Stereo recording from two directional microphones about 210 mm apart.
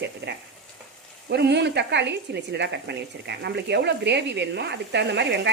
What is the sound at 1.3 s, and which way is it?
A woman's voice, 50° right (ahead or behind).